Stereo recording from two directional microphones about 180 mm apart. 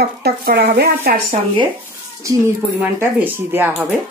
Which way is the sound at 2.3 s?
20° right (ahead or behind).